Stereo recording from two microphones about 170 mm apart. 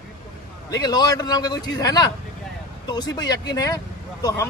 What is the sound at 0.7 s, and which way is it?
Speech, 20° left (ahead or behind).